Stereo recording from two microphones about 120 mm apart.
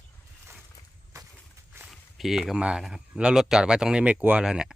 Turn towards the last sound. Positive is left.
turn(degrees=-5)  # may be behind; listen again after turning